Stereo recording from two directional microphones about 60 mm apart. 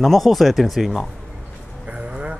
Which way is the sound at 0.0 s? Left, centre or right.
Centre.